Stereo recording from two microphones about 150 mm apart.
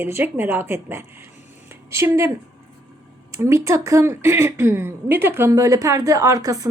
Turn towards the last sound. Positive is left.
turn(degrees=-25)  # may be behind; listen again after turning